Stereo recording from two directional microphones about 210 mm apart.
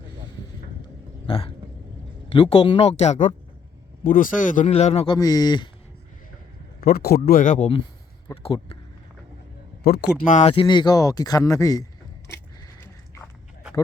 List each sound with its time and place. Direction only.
1.3 s speech: 25° left (ahead or behind)
6.8 s speech: 45° left (ahead or behind); by 8.8 s 25° left (ahead or behind)
9.8 s speech: 50° left (ahead or behind)
10.3 s speech: 30° left (ahead or behind)
12.8 s biting: 10° left (ahead or behind)